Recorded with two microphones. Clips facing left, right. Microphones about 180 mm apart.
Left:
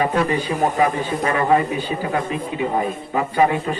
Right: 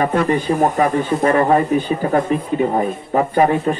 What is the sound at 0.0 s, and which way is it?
Speech, 50° right (ahead or behind).